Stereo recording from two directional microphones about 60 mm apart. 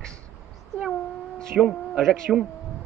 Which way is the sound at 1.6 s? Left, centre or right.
Centre.